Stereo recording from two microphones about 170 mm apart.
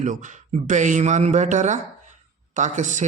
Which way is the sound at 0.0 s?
45° right (ahead or behind).